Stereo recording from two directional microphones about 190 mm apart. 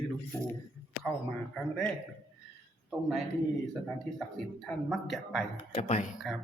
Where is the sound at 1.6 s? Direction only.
Centre (ahead or behind).